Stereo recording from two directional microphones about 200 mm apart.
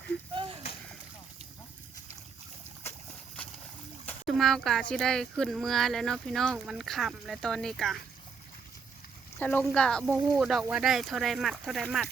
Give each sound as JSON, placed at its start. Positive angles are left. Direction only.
{"t": 0.3, "sound": "a sound", "side_deg": -25}
{"t": 4.0, "sound": "speech", "side_deg": 0}
{"t": 9.4, "sound": "speech", "side_deg": 10}